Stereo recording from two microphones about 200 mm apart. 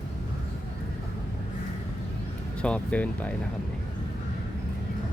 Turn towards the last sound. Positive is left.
turn(degrees=5)  # may be behind; listen again after turning